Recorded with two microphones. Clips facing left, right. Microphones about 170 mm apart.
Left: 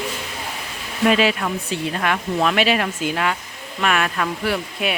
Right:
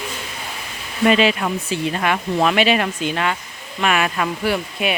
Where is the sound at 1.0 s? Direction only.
Centre (ahead or behind).